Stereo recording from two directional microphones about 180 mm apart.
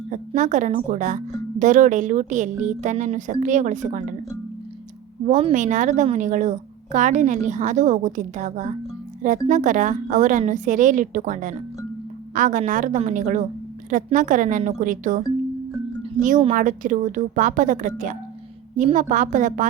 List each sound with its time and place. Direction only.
0.1 s a woman's voice: 45° right (ahead or behind)
5.5 s a woman's voice: 45° right (ahead or behind)
16.6 s a woman's voice: 45° right (ahead or behind)